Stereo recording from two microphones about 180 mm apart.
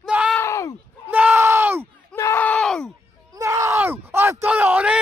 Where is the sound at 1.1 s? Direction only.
10° right (ahead or behind).